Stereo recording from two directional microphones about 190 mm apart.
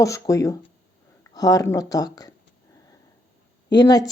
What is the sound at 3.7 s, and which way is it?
Speech, 20° left (ahead or behind).